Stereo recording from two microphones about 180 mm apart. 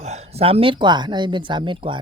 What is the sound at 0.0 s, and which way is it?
Speech, 35° right (ahead or behind).